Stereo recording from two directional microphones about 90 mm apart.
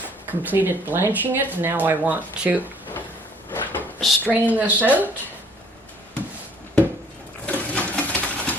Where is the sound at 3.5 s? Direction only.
20° left (ahead or behind).